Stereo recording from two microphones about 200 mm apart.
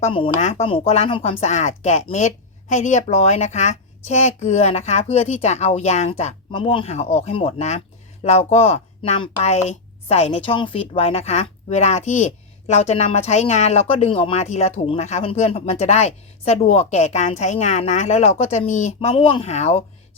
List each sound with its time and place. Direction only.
0.0 s speech: 30° left (ahead or behind)